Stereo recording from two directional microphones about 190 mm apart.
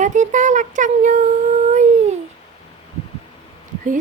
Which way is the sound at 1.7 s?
35° right (ahead or behind).